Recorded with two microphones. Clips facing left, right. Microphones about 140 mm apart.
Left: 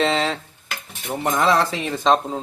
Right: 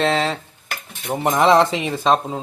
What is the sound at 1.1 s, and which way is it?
Speech, 25° right (ahead or behind).